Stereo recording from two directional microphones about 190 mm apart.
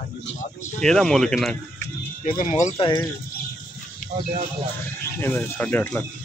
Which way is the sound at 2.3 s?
40° left (ahead or behind).